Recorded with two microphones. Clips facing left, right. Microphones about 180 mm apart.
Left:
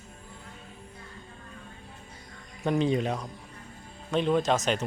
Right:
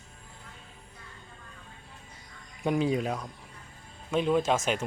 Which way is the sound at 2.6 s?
10° right (ahead or behind).